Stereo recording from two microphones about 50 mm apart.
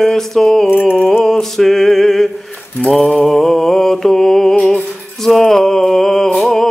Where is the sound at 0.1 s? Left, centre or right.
Centre.